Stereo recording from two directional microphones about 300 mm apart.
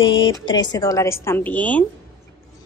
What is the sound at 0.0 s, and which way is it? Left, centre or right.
A woman's voice, centre.